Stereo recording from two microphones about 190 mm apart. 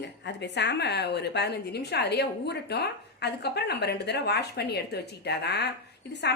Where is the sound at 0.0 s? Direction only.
65° left (ahead or behind).